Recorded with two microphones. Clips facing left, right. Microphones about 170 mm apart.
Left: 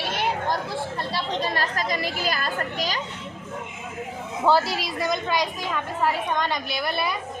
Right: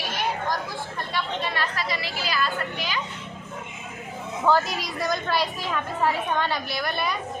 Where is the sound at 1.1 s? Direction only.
40° left (ahead or behind).